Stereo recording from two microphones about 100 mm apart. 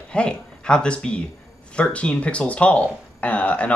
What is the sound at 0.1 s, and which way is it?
Speech, 10° left (ahead or behind).